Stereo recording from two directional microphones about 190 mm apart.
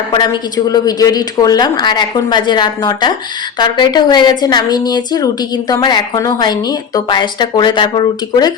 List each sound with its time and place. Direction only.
0.1 s a woman's voice: 20° left (ahead or behind)